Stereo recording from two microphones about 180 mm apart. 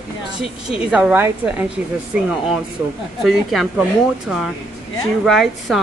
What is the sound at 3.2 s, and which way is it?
Speech, centre (ahead or behind).